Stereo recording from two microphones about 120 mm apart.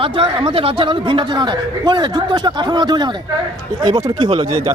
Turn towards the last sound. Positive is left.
turn(degrees=-40)  # may be behind; listen again after turning